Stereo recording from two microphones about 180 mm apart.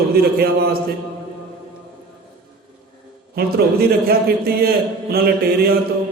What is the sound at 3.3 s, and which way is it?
A man's voice, 60° right (ahead or behind).